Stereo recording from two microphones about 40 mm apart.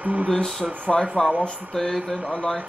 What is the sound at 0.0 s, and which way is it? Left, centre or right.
Speech, right.